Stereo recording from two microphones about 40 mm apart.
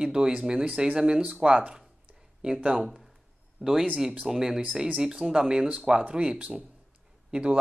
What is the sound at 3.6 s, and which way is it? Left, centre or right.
Speech, centre.